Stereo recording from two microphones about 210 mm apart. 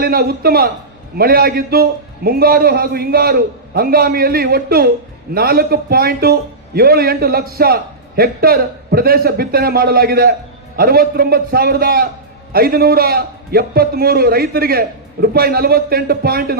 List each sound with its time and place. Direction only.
0.0 s a man's voice: 50° right (ahead or behind)